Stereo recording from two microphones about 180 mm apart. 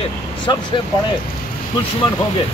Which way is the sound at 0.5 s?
25° left (ahead or behind).